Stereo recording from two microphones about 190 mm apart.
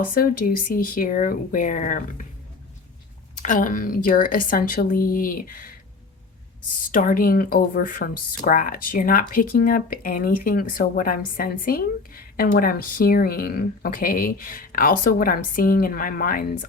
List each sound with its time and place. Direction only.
0.1 s speech: 50° left (ahead or behind)
3.3 s speech: 40° left (ahead or behind)
6.9 s speech: 45° left (ahead or behind)